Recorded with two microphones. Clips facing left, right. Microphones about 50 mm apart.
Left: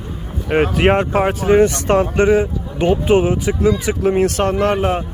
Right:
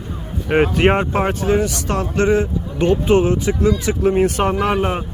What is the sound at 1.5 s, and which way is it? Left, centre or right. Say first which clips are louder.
Speech: left 10 dB; left.